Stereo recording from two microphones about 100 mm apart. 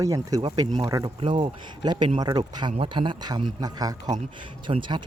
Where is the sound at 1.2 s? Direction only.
55° right (ahead or behind); by 4.1 s 40° right (ahead or behind).